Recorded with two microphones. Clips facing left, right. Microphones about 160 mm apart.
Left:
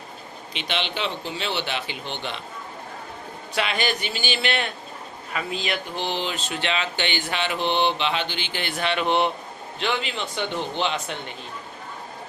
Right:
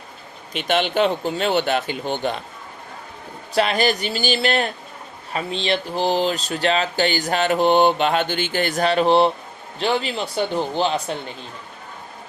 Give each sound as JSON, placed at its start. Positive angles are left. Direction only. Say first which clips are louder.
{"t": 0.5, "sound": "speech", "louder": "right 9 dB", "side_deg": -45}
{"t": 3.5, "sound": "speech", "louder": "right 6 dB", "side_deg": -40}
{"t": 5.3, "sound": "speech", "louder": "right 5 dB", "side_deg": -30}